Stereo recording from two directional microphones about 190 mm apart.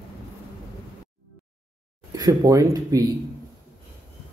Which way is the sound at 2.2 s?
20° right (ahead or behind).